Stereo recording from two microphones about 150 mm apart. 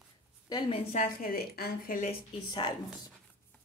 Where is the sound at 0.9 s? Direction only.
65° left (ahead or behind).